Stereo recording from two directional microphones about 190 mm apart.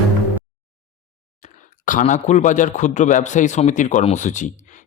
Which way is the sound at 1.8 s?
40° left (ahead or behind).